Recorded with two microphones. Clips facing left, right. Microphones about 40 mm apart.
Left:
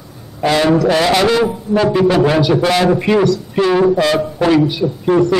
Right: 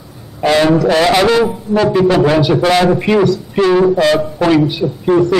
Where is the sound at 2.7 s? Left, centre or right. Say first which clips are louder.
Right 2 dB; centre.